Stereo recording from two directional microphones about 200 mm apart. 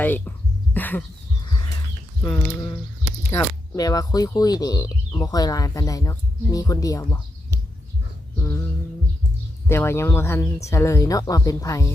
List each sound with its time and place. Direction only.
0.0 s a sound: 10° left (ahead or behind)
2.2 s speech: 5° left (ahead or behind)
9.6 s speech: 10° left (ahead or behind)